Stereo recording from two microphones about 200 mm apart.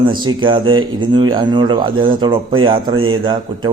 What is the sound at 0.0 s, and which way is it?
Speech, 20° right (ahead or behind).